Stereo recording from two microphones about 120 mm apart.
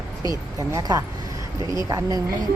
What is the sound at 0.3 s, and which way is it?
A woman's voice, 30° right (ahead or behind).